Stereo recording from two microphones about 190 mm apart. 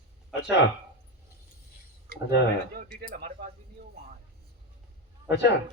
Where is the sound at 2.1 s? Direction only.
50° right (ahead or behind).